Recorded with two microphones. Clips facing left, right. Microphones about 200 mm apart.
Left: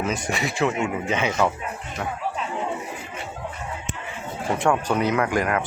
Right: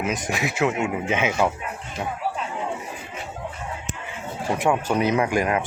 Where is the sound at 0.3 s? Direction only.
Centre (ahead or behind).